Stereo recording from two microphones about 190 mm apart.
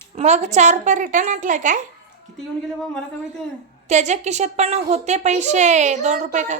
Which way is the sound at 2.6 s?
5° left (ahead or behind).